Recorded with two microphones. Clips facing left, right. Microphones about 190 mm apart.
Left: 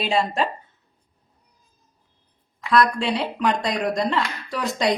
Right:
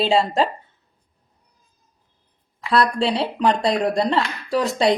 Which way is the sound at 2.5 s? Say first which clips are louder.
Even; 30° right (ahead or behind).